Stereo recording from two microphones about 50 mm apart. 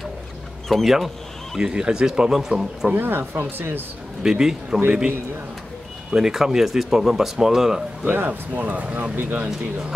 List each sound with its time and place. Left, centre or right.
0.7 s speech: centre
2.9 s speech: right
4.2 s speech: centre
4.7 s speech: right
6.1 s speech: centre
8.0 s speech: right